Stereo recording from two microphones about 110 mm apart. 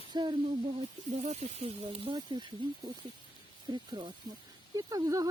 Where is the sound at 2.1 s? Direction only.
40° right (ahead or behind).